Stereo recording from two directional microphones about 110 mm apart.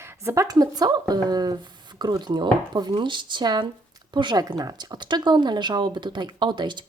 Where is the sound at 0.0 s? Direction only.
25° right (ahead or behind).